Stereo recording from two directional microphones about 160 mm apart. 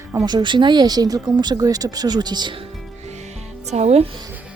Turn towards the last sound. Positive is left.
turn(degrees=-40)  # may be behind; listen again after turning